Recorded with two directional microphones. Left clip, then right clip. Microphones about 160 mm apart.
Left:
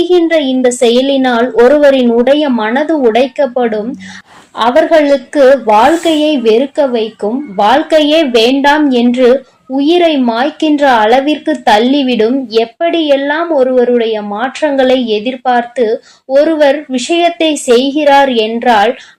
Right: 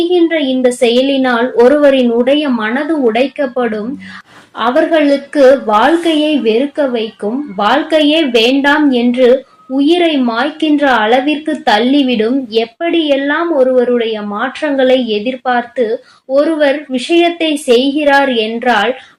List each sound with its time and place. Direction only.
0.1 s a woman's voice: 40° left (ahead or behind)